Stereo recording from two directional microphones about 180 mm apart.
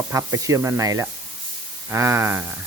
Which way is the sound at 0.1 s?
15° right (ahead or behind).